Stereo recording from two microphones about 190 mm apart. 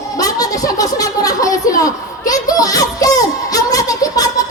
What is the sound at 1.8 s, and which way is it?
Music, 20° left (ahead or behind).